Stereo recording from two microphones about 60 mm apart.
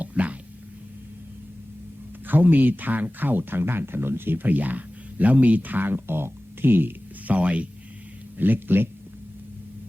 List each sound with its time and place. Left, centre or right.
0.0 s a sound: right
2.2 s speech: right
7.3 s speech: right
8.4 s speech: right